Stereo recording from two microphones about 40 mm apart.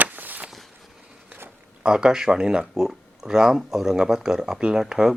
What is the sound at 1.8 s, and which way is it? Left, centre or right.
Speech, right.